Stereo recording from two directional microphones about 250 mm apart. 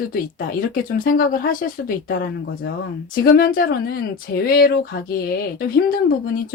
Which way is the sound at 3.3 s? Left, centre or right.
Left.